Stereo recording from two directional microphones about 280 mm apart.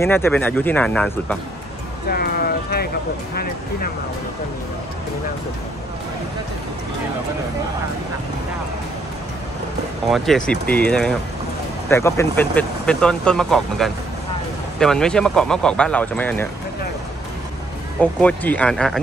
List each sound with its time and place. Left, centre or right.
0.0 s speech: centre
2.0 s music: left
10.0 s speech: centre
18.2 s speech: centre